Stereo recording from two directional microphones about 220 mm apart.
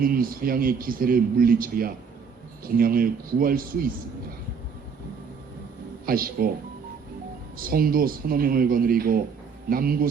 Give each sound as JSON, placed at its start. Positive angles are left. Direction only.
{"t": 0.0, "sound": "a man's voice", "side_deg": -40}
{"t": 6.1, "sound": "a man's voice", "side_deg": -40}
{"t": 7.6, "sound": "a man's voice", "side_deg": -40}